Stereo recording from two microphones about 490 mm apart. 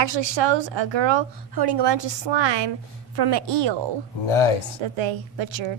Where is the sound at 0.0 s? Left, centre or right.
Right.